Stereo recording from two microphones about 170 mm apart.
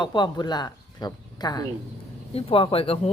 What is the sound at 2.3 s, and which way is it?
Speech, 35° left (ahead or behind).